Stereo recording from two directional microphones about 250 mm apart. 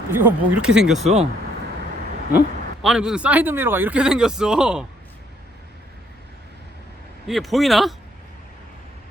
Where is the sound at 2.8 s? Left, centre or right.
Centre.